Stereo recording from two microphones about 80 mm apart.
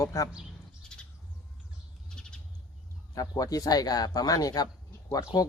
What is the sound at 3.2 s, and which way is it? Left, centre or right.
Speech, left.